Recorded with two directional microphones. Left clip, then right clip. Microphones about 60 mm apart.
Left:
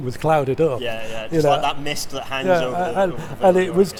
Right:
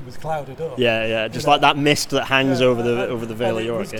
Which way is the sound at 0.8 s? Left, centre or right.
Right.